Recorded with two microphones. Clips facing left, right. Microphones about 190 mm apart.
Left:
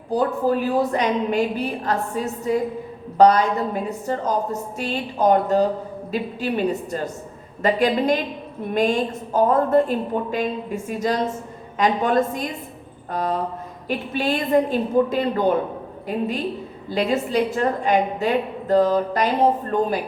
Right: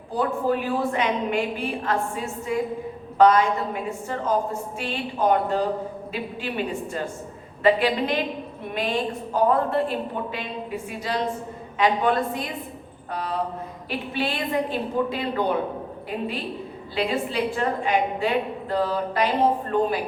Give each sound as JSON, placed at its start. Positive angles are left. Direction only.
{"t": 0.4, "sound": "a woman's voice", "side_deg": 40}